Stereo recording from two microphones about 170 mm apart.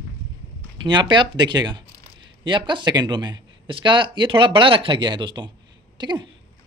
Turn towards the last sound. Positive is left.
turn(degrees=-25)  # may be behind; listen again after turning